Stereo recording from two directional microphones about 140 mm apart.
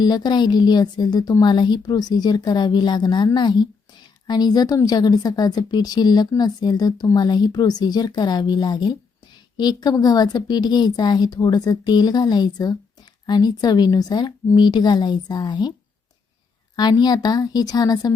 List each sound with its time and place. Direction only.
0.0 s a woman's voice: 30° left (ahead or behind)
16.7 s a woman's voice: 30° left (ahead or behind)